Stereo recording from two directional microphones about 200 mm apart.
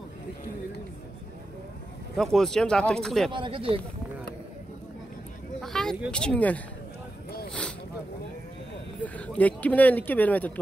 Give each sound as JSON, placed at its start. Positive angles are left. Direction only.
{"t": 2.1, "sound": "speech", "side_deg": 0}
{"t": 3.3, "sound": "speech", "side_deg": -25}
{"t": 5.6, "sound": "speech", "side_deg": 0}
{"t": 9.0, "sound": "speech", "side_deg": 5}